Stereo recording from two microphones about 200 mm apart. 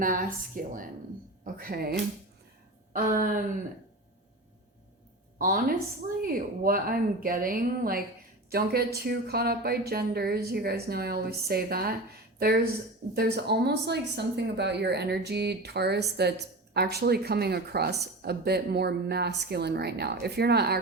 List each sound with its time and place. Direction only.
0.0 s speech: 45° right (ahead or behind)
5.4 s speech: 45° right (ahead or behind)
9.0 s speech: 50° right (ahead or behind)